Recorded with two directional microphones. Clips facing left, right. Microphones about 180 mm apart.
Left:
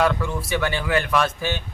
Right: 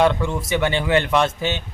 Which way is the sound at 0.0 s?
25° right (ahead or behind).